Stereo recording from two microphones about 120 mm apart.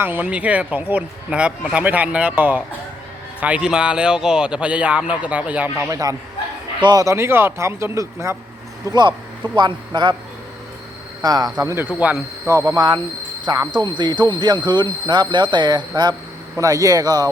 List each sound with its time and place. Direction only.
0.0 s speech: 15° right (ahead or behind)
5.9 s a man's voice: 30° right (ahead or behind)
7.0 s a man's voice: 25° right (ahead or behind)
8.9 s speech: 40° right (ahead or behind)
11.2 s a man's voice: 30° right (ahead or behind)
11.9 s speech: 10° right (ahead or behind)
12.5 s a man's voice: 30° right (ahead or behind)